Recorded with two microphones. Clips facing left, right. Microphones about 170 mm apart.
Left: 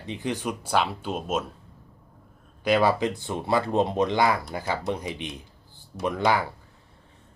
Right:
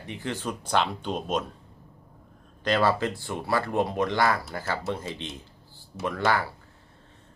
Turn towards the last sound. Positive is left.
turn(degrees=15)  # may be behind; listen again after turning